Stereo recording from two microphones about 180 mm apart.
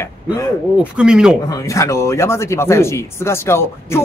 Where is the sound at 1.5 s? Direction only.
15° left (ahead or behind).